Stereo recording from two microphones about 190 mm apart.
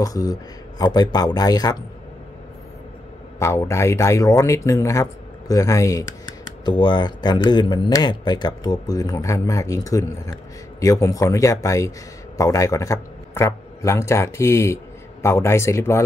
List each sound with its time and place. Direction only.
0.0 s speech: 20° left (ahead or behind)
3.3 s speech: 15° left (ahead or behind)